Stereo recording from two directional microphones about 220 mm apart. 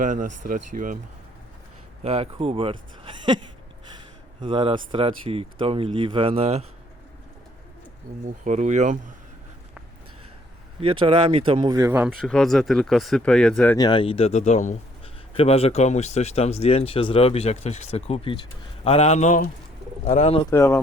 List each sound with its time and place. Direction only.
0.0 s speech: 35° right (ahead or behind)
2.0 s speech: 25° right (ahead or behind)
8.4 s speech: 30° right (ahead or behind)
11.0 s speech: 25° right (ahead or behind)
11.9 s speech: centre (ahead or behind)
13.7 s a man's voice: 20° left (ahead or behind)
20.5 s speech: 10° left (ahead or behind)